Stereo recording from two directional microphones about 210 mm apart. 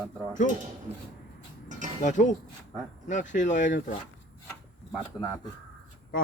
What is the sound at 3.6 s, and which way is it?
Speech, 60° left (ahead or behind).